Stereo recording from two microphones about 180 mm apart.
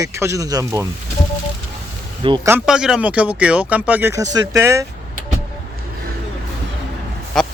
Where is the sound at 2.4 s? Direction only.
5° right (ahead or behind).